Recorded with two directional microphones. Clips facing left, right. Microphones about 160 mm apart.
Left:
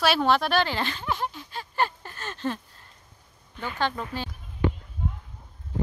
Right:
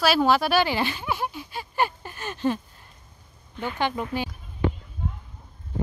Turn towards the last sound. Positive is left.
turn(degrees=5)  # may be behind; listen again after turning